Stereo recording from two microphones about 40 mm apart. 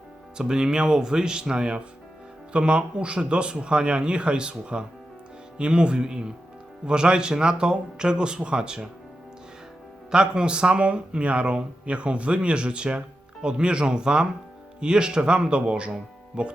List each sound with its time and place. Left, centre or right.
0.3 s speech: centre
10.1 s speech: right